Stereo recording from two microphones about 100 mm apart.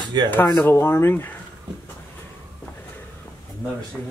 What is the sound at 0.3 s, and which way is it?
Speech, 20° left (ahead or behind).